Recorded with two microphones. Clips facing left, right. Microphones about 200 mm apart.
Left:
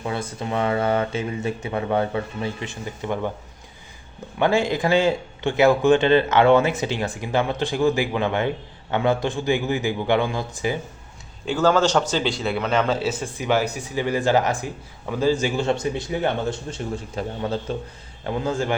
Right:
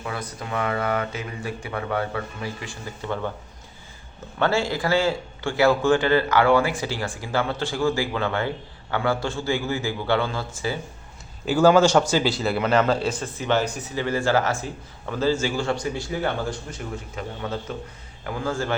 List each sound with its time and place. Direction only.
0.0 s a man's voice: 25° left (ahead or behind)
4.4 s a man's voice: 15° left (ahead or behind)
11.4 s a man's voice: 10° right (ahead or behind); by 17.7 s 30° left (ahead or behind)
18.3 s a man's voice: 20° left (ahead or behind)